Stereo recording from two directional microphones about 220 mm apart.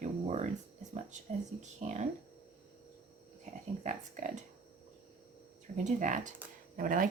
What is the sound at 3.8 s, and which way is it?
Speech, 30° right (ahead or behind).